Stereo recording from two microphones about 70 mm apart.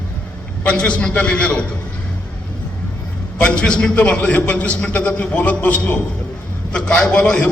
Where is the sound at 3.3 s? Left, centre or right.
Centre.